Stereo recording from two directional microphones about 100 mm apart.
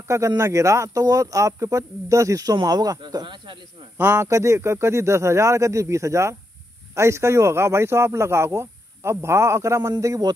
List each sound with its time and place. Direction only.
0.4 s speech: 30° right (ahead or behind); by 3.5 s 45° right (ahead or behind)
4.0 s speech: 25° right (ahead or behind)